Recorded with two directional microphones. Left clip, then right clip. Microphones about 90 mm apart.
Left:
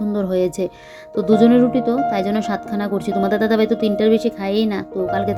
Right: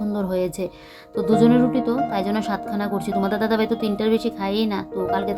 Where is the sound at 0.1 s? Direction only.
30° left (ahead or behind).